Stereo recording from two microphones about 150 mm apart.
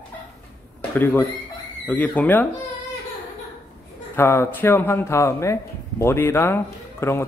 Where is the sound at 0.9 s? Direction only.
15° left (ahead or behind).